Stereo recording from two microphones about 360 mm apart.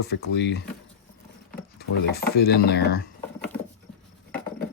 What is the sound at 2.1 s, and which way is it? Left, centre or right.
Speech, left.